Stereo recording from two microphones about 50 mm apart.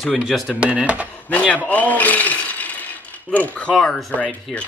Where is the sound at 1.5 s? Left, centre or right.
Left.